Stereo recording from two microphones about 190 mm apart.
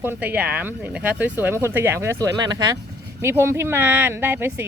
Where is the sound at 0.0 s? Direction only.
10° right (ahead or behind).